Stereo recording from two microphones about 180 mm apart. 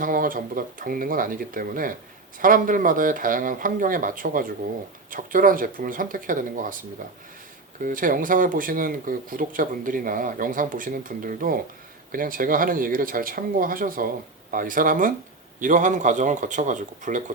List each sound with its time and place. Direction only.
0.0 s speech: 50° right (ahead or behind)
7.8 s speech: 50° right (ahead or behind)